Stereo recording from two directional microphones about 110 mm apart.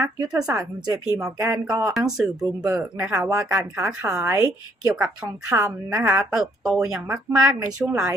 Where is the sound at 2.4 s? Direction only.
30° right (ahead or behind).